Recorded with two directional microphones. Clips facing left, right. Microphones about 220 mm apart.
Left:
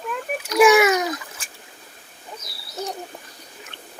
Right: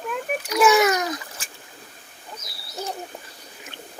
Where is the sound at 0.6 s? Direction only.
10° left (ahead or behind).